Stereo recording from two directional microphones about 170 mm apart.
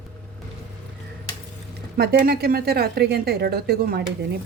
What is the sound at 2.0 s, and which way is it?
A woman's voice, 65° right (ahead or behind).